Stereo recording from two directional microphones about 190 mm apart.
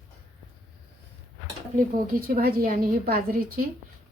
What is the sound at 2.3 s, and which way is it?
A woman's voice, 50° right (ahead or behind).